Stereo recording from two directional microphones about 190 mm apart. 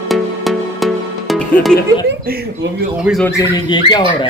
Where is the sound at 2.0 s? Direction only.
65° right (ahead or behind).